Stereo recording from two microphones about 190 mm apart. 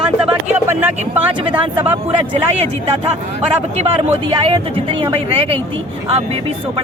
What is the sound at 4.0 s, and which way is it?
Speech, 30° right (ahead or behind).